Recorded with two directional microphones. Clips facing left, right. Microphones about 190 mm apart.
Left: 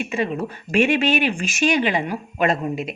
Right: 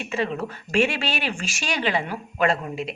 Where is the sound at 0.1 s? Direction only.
15° left (ahead or behind).